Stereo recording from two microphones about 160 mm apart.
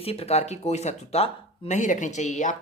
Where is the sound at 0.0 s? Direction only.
40° left (ahead or behind).